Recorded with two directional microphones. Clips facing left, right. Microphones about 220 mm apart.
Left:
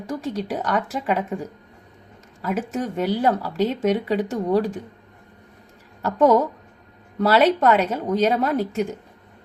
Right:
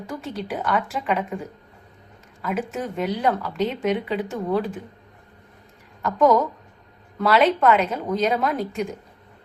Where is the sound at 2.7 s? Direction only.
40° left (ahead or behind).